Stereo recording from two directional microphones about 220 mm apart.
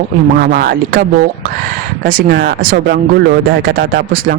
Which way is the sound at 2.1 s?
45° right (ahead or behind).